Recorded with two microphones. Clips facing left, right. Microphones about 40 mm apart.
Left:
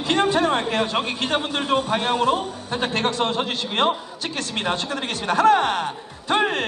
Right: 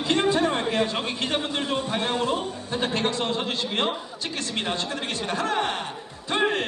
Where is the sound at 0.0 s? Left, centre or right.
Left.